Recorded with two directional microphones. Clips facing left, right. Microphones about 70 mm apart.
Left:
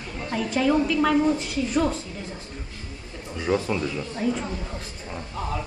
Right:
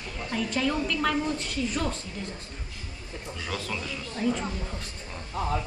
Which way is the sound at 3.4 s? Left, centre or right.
Left.